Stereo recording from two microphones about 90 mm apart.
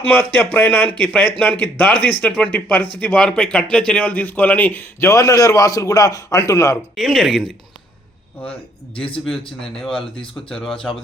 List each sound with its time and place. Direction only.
0.0 s a man's voice: 20° left (ahead or behind)
3.2 s a man's voice: 10° left (ahead or behind); by 6.7 s 35° left (ahead or behind)
6.9 s speech: centre (ahead or behind)
9.8 s speech: 10° left (ahead or behind)